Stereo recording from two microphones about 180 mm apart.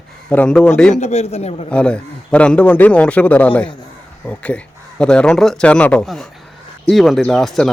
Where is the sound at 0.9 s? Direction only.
40° left (ahead or behind).